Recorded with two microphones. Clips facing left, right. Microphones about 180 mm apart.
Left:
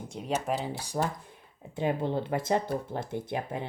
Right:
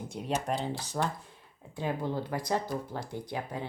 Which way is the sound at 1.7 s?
20° left (ahead or behind).